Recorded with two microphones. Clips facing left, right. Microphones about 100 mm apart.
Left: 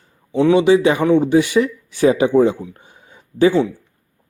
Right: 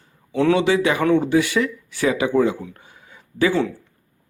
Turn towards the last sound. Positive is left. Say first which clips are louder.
# left 5 dB
turn(degrees=25)  # may be behind; listen again after turning